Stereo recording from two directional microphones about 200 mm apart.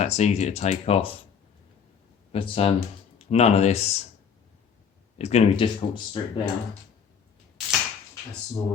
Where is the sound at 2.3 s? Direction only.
30° left (ahead or behind).